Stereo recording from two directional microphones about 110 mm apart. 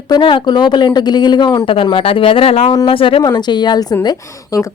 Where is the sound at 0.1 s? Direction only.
50° left (ahead or behind).